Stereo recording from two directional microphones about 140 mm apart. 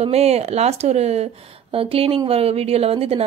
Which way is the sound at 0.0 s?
50° right (ahead or behind).